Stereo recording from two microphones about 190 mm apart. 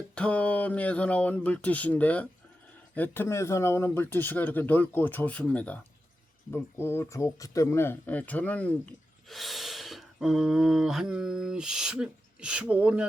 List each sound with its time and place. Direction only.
0.1 s speech: 5° left (ahead or behind)